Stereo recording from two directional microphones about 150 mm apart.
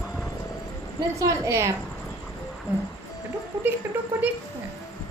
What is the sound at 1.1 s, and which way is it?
A woman's voice, 20° right (ahead or behind).